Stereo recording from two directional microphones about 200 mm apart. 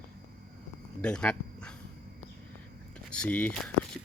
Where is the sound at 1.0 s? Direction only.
5° left (ahead or behind).